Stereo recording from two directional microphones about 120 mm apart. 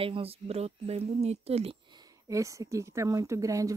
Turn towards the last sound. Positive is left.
turn(degrees=-25)  # may be behind; listen again after turning